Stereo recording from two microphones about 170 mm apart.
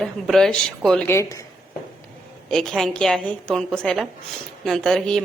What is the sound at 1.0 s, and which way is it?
Speech, 15° left (ahead or behind).